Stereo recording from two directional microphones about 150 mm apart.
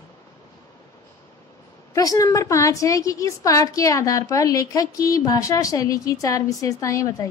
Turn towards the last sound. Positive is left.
turn(degrees=20)  # may be behind; listen again after turning